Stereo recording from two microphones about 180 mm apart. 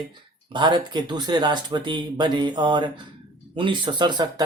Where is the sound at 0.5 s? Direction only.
25° right (ahead or behind).